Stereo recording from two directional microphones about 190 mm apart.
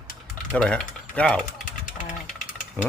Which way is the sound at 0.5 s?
5° left (ahead or behind).